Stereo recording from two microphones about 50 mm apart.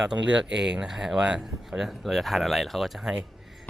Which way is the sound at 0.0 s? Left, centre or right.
Centre.